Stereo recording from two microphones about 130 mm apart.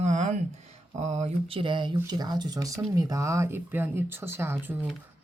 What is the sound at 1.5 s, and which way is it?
Speech, 40° right (ahead or behind).